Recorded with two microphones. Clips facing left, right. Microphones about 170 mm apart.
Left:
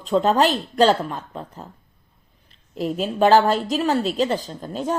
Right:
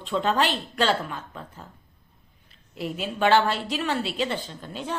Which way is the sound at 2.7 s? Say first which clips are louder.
Left 7 dB; 40° left (ahead or behind).